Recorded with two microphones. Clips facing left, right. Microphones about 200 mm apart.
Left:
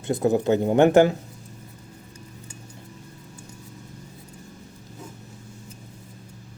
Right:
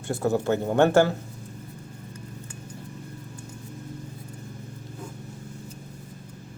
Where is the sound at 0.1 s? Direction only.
15° left (ahead or behind).